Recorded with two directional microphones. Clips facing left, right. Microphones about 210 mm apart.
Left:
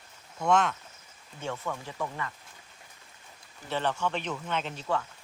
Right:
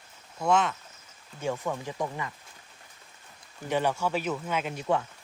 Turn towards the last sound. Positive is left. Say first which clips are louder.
# right 3 dB
turn(degrees=-10)  # may be behind; listen again after turning